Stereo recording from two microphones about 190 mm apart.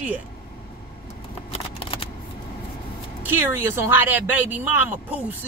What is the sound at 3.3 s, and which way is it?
Speech, 10° right (ahead or behind).